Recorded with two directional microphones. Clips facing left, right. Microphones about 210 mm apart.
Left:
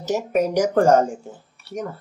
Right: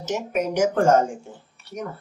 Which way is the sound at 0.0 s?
35° left (ahead or behind).